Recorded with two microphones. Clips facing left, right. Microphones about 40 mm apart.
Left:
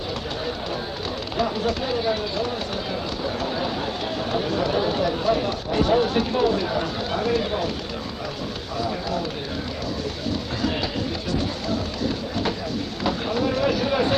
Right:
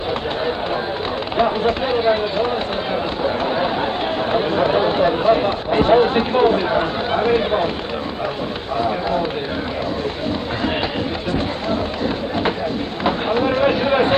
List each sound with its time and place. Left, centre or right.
1.4 s speech: right
2.9 s run: right
4.3 s speech: right
8.8 s speech: right
11.3 s a sound: right
13.1 s speech: right